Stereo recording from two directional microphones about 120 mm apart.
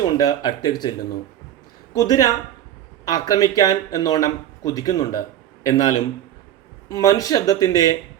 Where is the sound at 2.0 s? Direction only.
30° left (ahead or behind).